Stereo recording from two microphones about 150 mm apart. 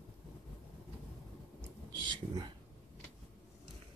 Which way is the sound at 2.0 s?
30° right (ahead or behind).